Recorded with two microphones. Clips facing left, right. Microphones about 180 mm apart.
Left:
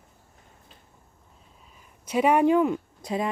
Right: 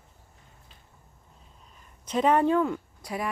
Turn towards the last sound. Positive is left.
turn(degrees=20)  # may be behind; listen again after turning